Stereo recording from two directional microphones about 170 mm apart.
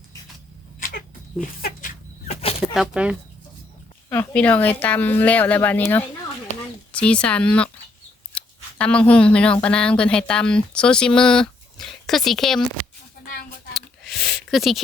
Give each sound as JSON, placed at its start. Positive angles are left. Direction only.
{"t": 1.6, "sound": "chicken", "side_deg": 50}
{"t": 2.3, "sound": "chicken", "side_deg": 35}
{"t": 2.7, "sound": "speech", "side_deg": -5}
{"t": 4.1, "sound": "speech", "side_deg": 10}
{"t": 13.7, "sound": "a sound", "side_deg": 0}